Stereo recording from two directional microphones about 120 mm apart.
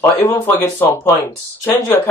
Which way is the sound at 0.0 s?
20° left (ahead or behind).